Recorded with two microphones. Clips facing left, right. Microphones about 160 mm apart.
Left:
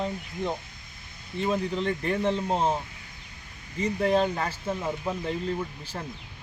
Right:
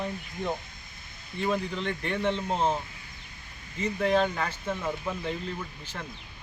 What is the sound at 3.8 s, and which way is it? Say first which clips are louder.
Speech: left 1 dB; 35° left (ahead or behind).